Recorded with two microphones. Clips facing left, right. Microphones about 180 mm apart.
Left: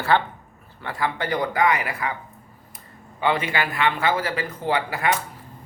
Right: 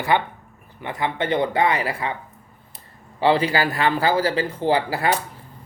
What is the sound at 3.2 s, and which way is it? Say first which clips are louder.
Speech: right 5 dB; 30° right (ahead or behind).